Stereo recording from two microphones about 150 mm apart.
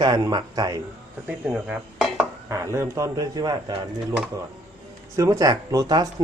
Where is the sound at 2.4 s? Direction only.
20° right (ahead or behind).